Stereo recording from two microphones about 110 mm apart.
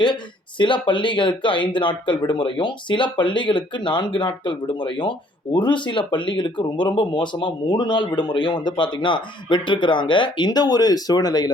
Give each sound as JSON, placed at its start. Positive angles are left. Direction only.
{"t": 0.6, "sound": "speech", "side_deg": 50}